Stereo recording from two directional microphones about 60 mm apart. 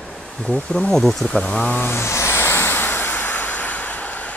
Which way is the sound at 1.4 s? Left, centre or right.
Centre.